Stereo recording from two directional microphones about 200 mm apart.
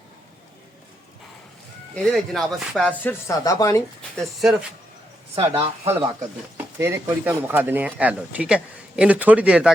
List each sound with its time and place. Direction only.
2.0 s speech: centre (ahead or behind)
4.2 s speech: centre (ahead or behind)
5.3 s speech: 30° right (ahead or behind)
6.7 s speech: 15° right (ahead or behind)